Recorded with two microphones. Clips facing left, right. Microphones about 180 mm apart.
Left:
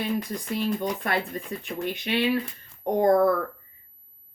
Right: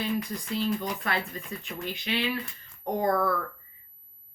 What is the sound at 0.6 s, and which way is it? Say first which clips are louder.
Speech: left 2 dB; 50° left (ahead or behind).